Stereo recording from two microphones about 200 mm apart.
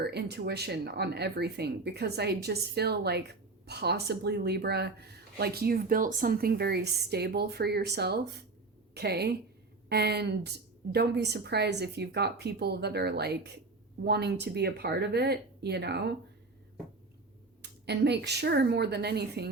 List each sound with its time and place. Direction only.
0.0 s speech: 55° right (ahead or behind)
17.6 s speech: 55° right (ahead or behind)